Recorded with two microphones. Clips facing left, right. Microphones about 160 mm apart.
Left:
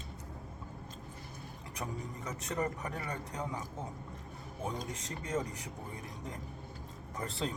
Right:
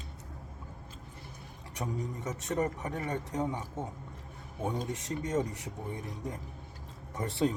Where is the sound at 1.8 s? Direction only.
20° right (ahead or behind).